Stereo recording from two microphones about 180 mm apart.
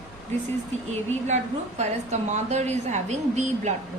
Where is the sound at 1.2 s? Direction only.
40° right (ahead or behind).